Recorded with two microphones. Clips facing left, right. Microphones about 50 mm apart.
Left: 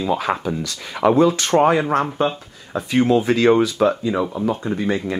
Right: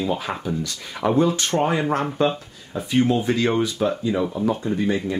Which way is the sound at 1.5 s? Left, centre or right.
Left.